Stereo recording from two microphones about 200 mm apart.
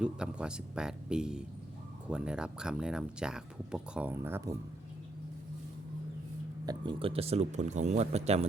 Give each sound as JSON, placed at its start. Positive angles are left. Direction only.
{"t": 0.0, "sound": "speech", "side_deg": -5}
{"t": 6.7, "sound": "speech", "side_deg": -25}